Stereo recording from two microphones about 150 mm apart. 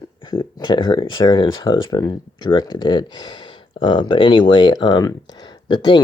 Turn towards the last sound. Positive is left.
turn(degrees=30)  # may be behind; listen again after turning